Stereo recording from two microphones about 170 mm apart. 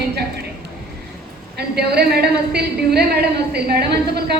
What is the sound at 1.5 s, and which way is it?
A woman's voice, 70° right (ahead or behind).